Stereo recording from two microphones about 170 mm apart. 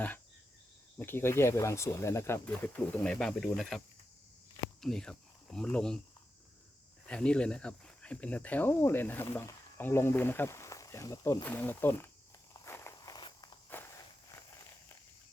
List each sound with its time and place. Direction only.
0.9 s speech: 15° left (ahead or behind)
4.8 s speech: 5° left (ahead or behind)
7.1 s speech: 5° left (ahead or behind)
12.6 s walk: 15° left (ahead or behind)